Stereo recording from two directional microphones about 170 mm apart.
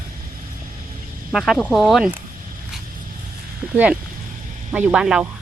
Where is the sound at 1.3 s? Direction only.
Centre (ahead or behind).